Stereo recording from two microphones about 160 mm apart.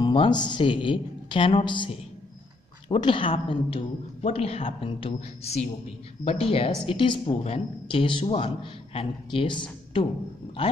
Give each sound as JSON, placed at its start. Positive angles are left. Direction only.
{"t": 0.0, "sound": "a man's voice", "side_deg": 30}
{"t": 2.9, "sound": "a man's voice", "side_deg": 35}